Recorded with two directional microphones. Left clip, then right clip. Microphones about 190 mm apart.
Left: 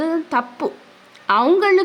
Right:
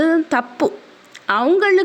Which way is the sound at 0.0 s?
20° right (ahead or behind).